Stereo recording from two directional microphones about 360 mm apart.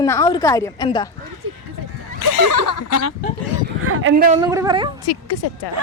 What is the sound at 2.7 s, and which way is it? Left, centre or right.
Speech, left.